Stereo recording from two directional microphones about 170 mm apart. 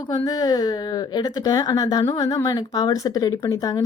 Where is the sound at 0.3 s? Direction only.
20° left (ahead or behind).